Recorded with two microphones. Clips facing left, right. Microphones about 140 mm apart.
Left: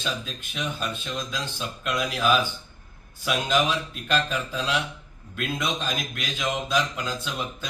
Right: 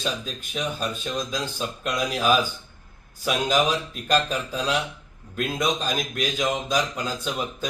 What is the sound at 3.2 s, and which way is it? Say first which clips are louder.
Speech: right 2 dB; 40° right (ahead or behind).